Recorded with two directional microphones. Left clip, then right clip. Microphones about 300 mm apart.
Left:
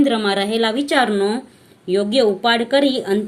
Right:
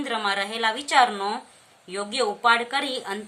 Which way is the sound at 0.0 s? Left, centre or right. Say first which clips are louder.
Left 8 dB; centre.